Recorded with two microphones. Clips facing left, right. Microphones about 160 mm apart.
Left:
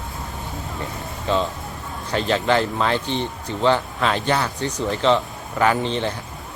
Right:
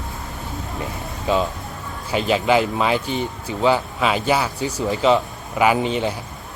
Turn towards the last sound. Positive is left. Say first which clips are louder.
# right 2 dB
turn(degrees=-10)  # may be behind; listen again after turning